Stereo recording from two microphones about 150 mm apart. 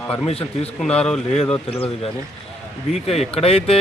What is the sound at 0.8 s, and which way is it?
Speech, 5° left (ahead or behind).